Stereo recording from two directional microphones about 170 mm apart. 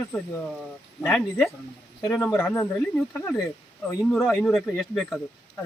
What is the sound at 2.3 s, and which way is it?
Speech, 10° left (ahead or behind).